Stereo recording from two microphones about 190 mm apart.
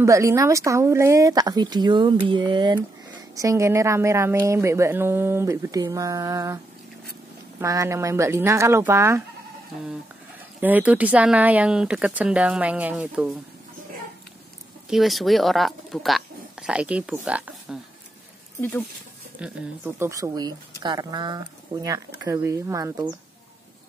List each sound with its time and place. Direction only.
0.0 s speech: 15° right (ahead or behind)
7.6 s speech: 15° right (ahead or behind)
10.6 s speech: 10° right (ahead or behind)
14.9 s speech: centre (ahead or behind)
18.6 s speech: 10° left (ahead or behind)
19.4 s speech: 10° right (ahead or behind)